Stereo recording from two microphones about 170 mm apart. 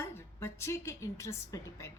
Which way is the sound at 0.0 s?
15° left (ahead or behind).